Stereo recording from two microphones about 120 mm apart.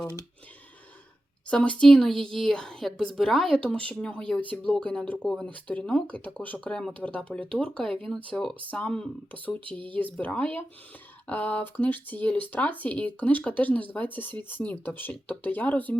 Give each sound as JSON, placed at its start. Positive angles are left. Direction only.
{"t": 1.5, "sound": "a woman's voice", "side_deg": 10}